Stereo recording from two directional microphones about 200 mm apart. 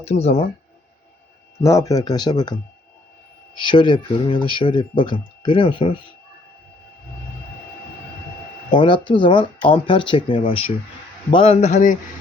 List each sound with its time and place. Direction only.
0.0 s a man's voice: 30° left (ahead or behind)
1.6 s speech: 15° left (ahead or behind)
3.6 s speech: 25° left (ahead or behind)
8.7 s a man's voice: 25° left (ahead or behind)